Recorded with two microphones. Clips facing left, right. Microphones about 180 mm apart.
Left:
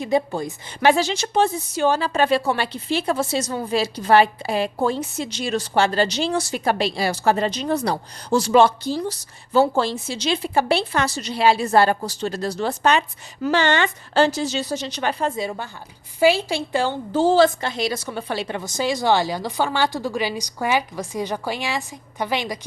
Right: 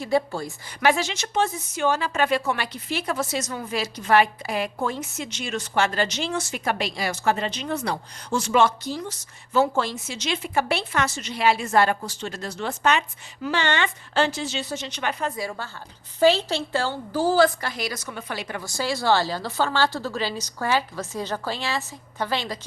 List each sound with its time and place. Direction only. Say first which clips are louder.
0.0 s a woman's voice: left 2 dB; 20° left (ahead or behind)